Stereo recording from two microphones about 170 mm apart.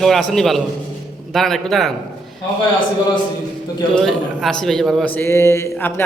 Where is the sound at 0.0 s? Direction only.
Centre (ahead or behind).